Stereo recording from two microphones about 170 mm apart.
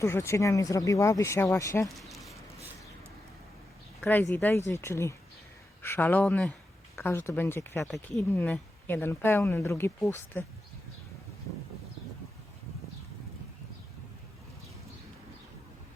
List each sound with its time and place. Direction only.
0.0 s speech: 15° left (ahead or behind)
2.0 s a sound: centre (ahead or behind)
4.0 s speech: 15° left (ahead or behind)
7.9 s speech: centre (ahead or behind)
8.3 s speech: 10° left (ahead or behind)